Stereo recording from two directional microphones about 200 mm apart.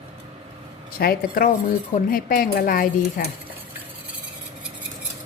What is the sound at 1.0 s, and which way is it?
Speech, 45° left (ahead or behind).